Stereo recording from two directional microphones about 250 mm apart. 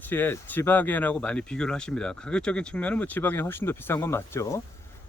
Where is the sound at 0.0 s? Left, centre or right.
Centre.